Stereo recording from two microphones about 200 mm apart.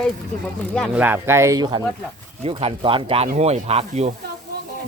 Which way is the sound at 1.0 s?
10° right (ahead or behind).